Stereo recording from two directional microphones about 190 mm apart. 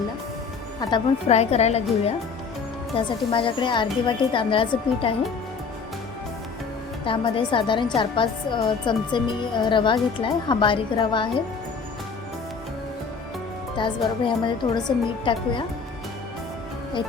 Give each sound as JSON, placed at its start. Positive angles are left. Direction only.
{"t": 0.8, "sound": "a woman's voice", "side_deg": 25}
{"t": 1.3, "sound": "a woman's voice", "side_deg": 35}
{"t": 7.0, "sound": "a woman's voice", "side_deg": 25}
{"t": 14.3, "sound": "a woman's voice", "side_deg": 25}